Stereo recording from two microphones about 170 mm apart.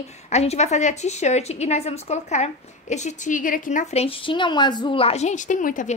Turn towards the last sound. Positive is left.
turn(degrees=50)  # may be behind; listen again after turning